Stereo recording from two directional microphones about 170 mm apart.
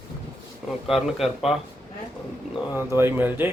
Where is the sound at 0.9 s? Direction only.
Centre (ahead or behind).